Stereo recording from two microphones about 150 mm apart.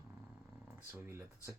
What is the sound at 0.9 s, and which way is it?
Speech, 15° right (ahead or behind).